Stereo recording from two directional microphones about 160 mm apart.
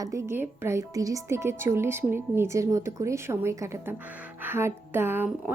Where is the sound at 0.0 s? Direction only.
20° right (ahead or behind).